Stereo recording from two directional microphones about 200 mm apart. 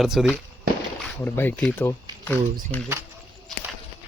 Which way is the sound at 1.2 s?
10° left (ahead or behind).